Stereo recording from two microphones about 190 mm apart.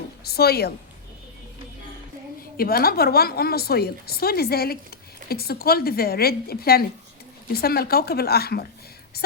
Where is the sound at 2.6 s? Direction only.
50° left (ahead or behind).